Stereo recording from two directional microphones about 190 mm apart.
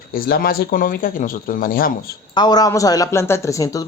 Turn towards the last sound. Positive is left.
turn(degrees=15)  # may be behind; listen again after turning